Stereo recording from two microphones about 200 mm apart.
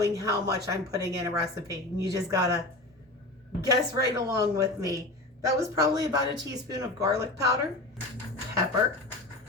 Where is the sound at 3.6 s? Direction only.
15° right (ahead or behind).